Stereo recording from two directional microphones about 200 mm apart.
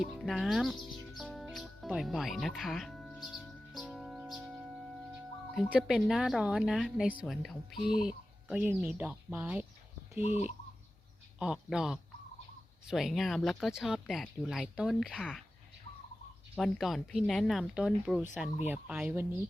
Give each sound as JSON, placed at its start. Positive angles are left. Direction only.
{"t": 0.0, "sound": "music", "side_deg": 0}
{"t": 5.5, "sound": "speech", "side_deg": -5}
{"t": 10.2, "sound": "speech", "side_deg": 30}
{"t": 11.3, "sound": "speech", "side_deg": -5}
{"t": 16.6, "sound": "speech", "side_deg": 0}